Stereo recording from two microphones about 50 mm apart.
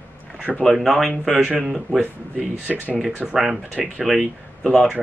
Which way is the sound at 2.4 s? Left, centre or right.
Right.